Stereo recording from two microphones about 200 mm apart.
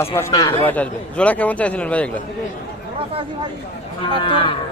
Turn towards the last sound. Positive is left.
turn(degrees=25)  # may be behind; listen again after turning